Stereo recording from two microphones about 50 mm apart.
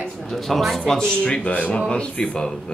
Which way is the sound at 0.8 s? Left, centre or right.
Centre.